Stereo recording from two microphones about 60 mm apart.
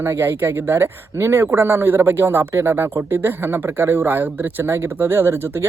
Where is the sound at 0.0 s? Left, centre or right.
Right.